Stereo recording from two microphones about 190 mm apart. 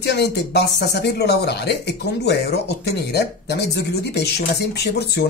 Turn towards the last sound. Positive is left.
turn(degrees=60)  # may be behind; listen again after turning